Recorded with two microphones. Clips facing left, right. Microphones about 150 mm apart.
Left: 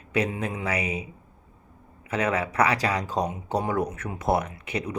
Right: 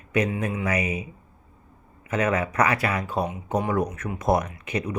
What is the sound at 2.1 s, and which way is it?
Speech, 10° left (ahead or behind).